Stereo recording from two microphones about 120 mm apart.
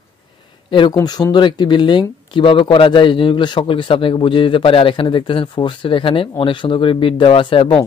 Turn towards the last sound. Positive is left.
turn(degrees=50)  # may be behind; listen again after turning